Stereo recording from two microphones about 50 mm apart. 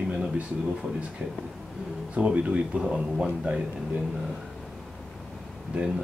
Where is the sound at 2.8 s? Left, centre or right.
Centre.